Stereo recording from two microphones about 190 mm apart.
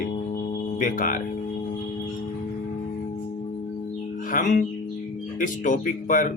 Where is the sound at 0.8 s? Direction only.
45° left (ahead or behind).